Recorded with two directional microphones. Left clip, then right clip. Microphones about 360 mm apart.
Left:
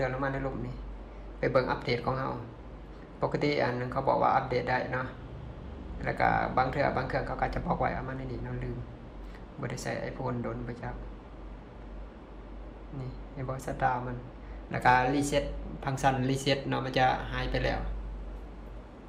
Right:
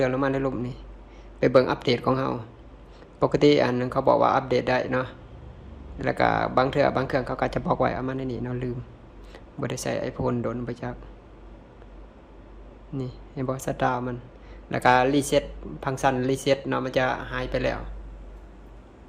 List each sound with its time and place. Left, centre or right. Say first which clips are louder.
0.0 s speech: right 8 dB; right
13.0 s speech: right 10 dB; right